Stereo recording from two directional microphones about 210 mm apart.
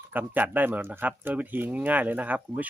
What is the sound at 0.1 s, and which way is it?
Speech, 10° right (ahead or behind).